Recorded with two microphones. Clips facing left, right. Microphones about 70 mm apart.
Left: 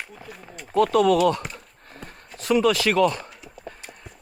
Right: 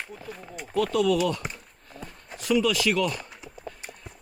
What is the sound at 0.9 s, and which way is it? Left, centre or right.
Speech, left.